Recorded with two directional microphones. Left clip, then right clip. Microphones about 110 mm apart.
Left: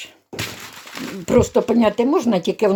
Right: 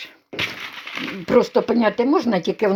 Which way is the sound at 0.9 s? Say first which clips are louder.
Right 2 dB; 80° left.